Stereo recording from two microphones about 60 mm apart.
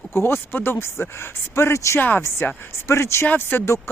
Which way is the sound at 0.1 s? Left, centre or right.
Left.